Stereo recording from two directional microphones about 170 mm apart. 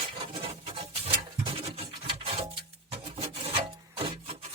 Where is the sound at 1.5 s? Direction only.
35° right (ahead or behind).